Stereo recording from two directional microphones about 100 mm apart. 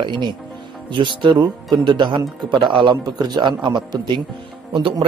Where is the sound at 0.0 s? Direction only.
50° right (ahead or behind).